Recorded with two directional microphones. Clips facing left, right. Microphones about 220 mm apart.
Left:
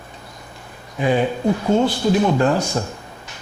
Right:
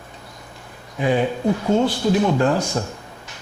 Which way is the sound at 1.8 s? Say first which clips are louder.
Left 1 dB; 30° left (ahead or behind).